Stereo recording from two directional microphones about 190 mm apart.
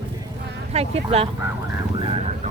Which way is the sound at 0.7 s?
30° right (ahead or behind).